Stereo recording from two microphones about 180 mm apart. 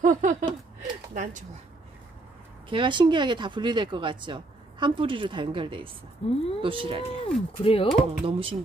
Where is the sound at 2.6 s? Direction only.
25° right (ahead or behind).